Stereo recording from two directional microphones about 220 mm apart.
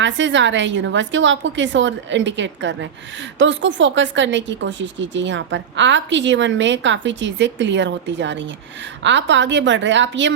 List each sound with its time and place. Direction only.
0.0 s speech: 55° right (ahead or behind)